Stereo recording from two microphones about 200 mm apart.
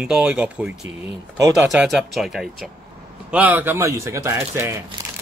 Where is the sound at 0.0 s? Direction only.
5° right (ahead or behind).